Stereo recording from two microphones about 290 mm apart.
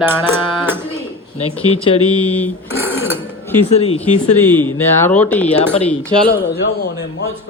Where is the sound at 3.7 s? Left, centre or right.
Left.